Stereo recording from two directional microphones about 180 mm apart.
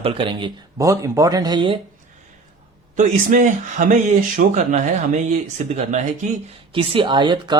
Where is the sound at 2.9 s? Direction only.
45° right (ahead or behind).